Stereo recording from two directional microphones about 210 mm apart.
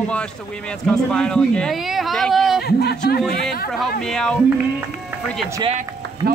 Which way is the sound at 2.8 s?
50° left (ahead or behind).